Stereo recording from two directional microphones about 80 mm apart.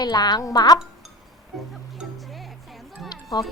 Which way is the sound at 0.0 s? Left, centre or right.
Left.